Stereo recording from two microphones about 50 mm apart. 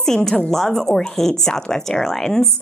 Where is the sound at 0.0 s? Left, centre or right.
Centre.